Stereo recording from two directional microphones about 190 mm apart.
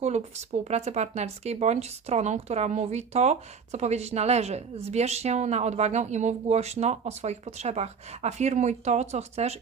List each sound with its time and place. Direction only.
0.0 s speech: 35° right (ahead or behind)